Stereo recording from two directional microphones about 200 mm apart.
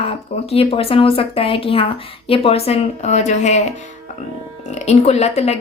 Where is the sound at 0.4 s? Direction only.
30° left (ahead or behind).